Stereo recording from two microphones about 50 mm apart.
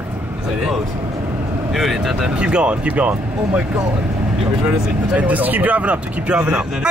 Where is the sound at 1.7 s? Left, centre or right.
Centre.